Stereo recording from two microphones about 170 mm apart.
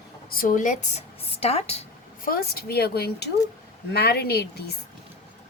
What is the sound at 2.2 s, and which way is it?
Speech, 60° left (ahead or behind).